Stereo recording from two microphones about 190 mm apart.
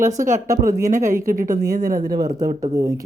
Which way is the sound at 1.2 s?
45° right (ahead or behind).